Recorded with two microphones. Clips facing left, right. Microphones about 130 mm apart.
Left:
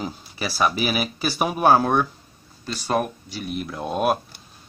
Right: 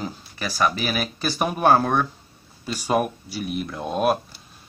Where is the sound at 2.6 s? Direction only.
10° right (ahead or behind).